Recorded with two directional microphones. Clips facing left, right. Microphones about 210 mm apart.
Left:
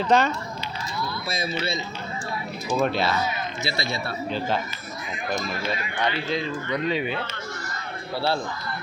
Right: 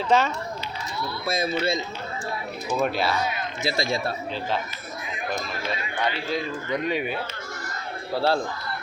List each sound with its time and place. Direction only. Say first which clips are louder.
0.1 s speech: left 1 dB; 5° right (ahead or behind)
1.3 s speech: right 6 dB; 50° right (ahead or behind)
2.7 s speech: left 1 dB; 5° right (ahead or behind)
3.6 s speech: right 6 dB; 45° right (ahead or behind)
4.3 s speech: left 5 dB; centre (ahead or behind)
6.3 s speech: even; 10° right (ahead or behind)